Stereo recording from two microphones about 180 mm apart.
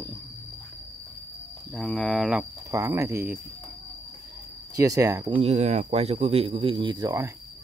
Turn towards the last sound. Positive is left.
turn(degrees=-20)  # may be behind; listen again after turning